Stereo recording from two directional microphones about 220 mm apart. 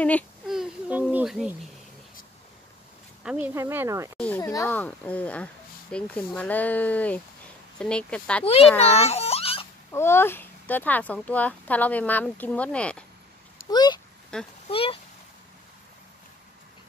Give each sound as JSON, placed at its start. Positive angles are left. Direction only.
{"t": 0.0, "sound": "speech", "side_deg": 0}
{"t": 3.3, "sound": "speech", "side_deg": -10}
{"t": 4.2, "sound": "speech", "side_deg": 10}
{"t": 9.0, "sound": "babbling", "side_deg": 30}
{"t": 9.8, "sound": "speech", "side_deg": 10}
{"t": 13.7, "sound": "speech", "side_deg": 20}
{"t": 14.3, "sound": "speech", "side_deg": 5}
{"t": 14.7, "sound": "speech", "side_deg": 25}